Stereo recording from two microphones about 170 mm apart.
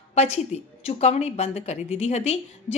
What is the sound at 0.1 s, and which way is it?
Speech, 40° left (ahead or behind).